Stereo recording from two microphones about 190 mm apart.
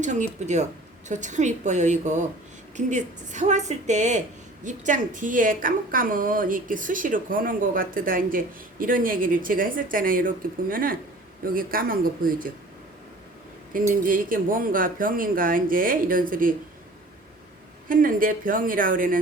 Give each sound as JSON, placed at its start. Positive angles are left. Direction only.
{"t": 0.0, "sound": "a woman's voice", "side_deg": -40}
{"t": 13.7, "sound": "a woman's voice", "side_deg": -45}
{"t": 17.8, "sound": "a woman's voice", "side_deg": -45}